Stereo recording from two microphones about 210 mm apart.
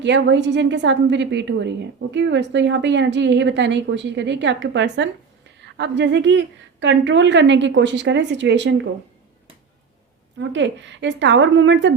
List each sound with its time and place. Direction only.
0.0 s a woman's voice: 55° right (ahead or behind)
10.3 s a woman's voice: 60° right (ahead or behind)